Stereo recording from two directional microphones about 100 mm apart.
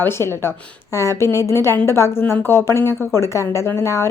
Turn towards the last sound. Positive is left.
turn(degrees=25)  # may be behind; listen again after turning